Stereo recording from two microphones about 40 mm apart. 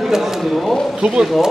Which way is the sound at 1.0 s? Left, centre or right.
Right.